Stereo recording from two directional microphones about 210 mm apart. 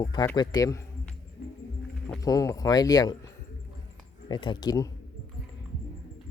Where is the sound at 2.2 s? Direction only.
15° left (ahead or behind).